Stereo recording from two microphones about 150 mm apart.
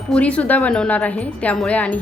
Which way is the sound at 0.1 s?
10° left (ahead or behind).